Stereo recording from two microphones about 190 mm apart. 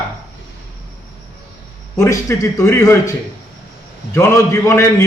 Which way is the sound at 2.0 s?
15° left (ahead or behind).